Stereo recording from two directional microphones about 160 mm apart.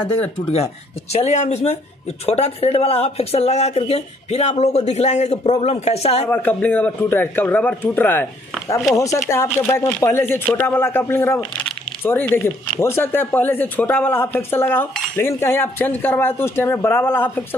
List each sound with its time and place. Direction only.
1.1 s speech: 45° left (ahead or behind)
6.3 s a man's voice: 10° left (ahead or behind)